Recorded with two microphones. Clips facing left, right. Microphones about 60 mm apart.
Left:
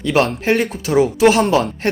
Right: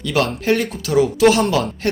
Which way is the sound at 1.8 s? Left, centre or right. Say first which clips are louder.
Left 1 dB; left.